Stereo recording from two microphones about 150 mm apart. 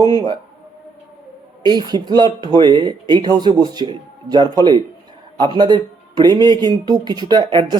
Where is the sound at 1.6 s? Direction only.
30° right (ahead or behind).